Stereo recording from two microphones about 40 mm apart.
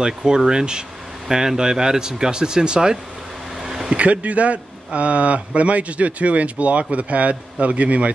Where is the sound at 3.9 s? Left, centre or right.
Right.